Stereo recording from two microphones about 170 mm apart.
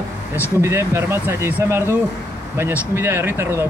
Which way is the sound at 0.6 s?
15° right (ahead or behind).